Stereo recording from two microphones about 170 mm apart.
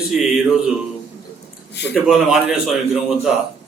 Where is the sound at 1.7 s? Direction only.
90° left.